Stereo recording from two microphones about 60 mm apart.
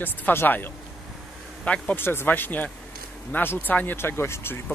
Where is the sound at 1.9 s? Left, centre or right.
Left.